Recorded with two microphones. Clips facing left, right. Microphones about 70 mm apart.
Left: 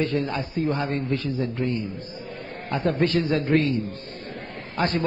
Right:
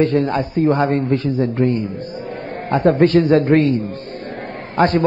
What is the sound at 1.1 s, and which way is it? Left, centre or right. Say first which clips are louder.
Speech: right 8 dB; right.